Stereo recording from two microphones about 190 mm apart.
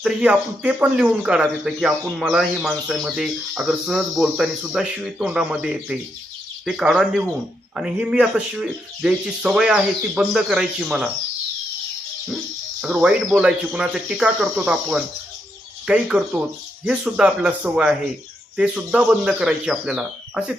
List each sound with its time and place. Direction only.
0.0 s speech: 5° right (ahead or behind)
12.8 s speech: 5° right (ahead or behind)